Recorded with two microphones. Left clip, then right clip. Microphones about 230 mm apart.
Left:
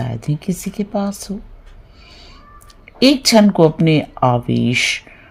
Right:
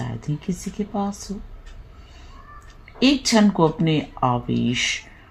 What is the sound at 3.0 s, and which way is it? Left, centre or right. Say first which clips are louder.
Speech: left 7 dB; left.